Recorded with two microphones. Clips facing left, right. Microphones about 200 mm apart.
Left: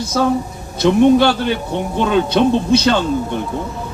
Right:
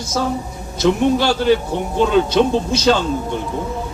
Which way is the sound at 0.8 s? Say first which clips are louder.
Left 5 dB; 60° left (ahead or behind).